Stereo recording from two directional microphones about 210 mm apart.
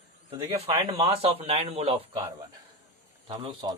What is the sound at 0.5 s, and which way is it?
Speech, 30° right (ahead or behind).